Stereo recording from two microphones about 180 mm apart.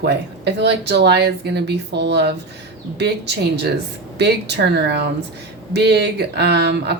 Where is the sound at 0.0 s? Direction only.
65° right (ahead or behind).